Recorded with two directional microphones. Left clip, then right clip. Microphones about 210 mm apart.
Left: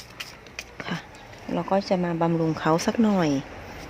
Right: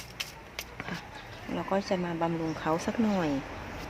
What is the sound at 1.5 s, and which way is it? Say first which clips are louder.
Speech: left 6 dB; 45° left (ahead or behind).